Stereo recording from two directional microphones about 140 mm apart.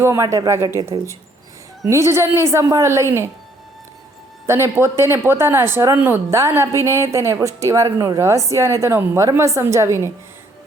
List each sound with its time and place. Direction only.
0.0 s speech: 20° right (ahead or behind)
4.4 s speech: 20° right (ahead or behind)